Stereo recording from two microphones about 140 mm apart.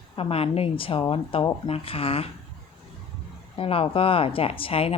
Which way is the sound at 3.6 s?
40° left (ahead or behind).